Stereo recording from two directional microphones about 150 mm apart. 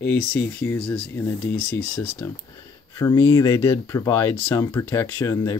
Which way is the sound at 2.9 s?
20° left (ahead or behind).